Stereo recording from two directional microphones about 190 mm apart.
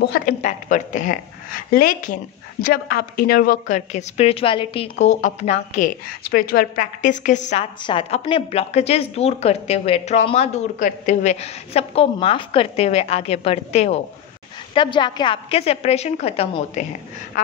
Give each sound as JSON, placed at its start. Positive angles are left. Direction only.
{"t": 0.0, "sound": "a woman's voice", "side_deg": 50}
{"t": 7.8, "sound": "a woman's voice", "side_deg": 25}
{"t": 14.7, "sound": "a woman's voice", "side_deg": 25}